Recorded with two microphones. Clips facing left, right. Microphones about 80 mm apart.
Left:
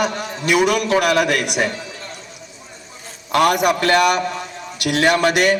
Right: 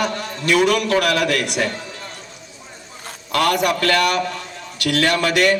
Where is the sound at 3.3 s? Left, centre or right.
Centre.